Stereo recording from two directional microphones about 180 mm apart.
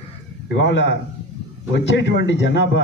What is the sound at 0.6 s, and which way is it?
A man's voice, 80° left.